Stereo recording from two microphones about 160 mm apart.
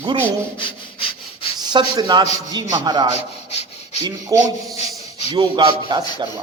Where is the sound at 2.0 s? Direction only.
30° right (ahead or behind).